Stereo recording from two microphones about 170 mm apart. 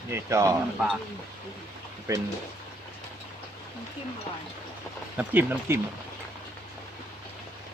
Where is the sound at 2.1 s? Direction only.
20° right (ahead or behind).